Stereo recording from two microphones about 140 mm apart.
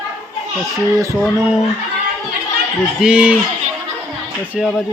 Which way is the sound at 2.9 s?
5° right (ahead or behind).